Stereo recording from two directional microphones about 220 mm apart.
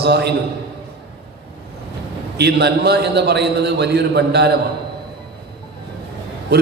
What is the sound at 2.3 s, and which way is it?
A man's voice, 50° right (ahead or behind).